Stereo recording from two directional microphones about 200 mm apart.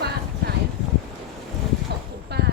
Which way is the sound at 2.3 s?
55° right (ahead or behind).